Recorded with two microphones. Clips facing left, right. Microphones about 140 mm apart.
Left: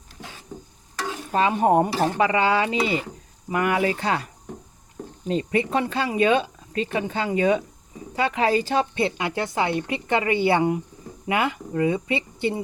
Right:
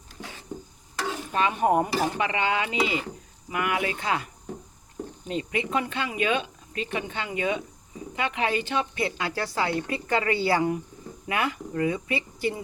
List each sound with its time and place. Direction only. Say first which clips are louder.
1.3 s speech: left 4 dB; 30° left (ahead or behind)
5.3 s speech: left 5 dB; 35° left (ahead or behind)